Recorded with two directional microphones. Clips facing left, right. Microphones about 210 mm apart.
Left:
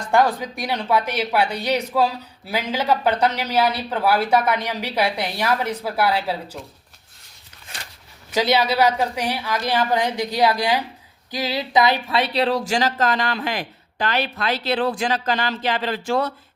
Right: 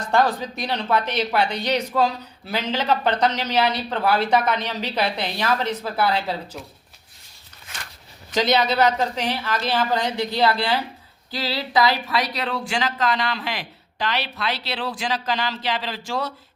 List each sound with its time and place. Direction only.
0.1 s speech: 15° left (ahead or behind)
8.3 s speech: 10° left (ahead or behind); by 16.3 s 55° left (ahead or behind)